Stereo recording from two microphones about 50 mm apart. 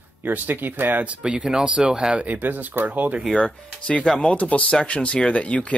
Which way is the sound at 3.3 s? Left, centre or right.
Left.